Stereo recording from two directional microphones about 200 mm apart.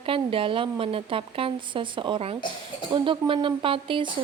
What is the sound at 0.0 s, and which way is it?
A woman's voice, 25° right (ahead or behind).